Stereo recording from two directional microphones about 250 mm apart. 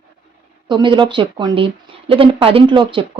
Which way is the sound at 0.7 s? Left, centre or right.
Centre.